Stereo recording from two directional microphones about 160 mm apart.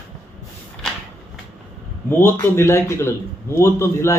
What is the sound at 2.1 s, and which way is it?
A man's voice, 15° left (ahead or behind).